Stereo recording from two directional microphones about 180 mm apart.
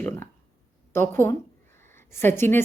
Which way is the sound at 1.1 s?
15° left (ahead or behind).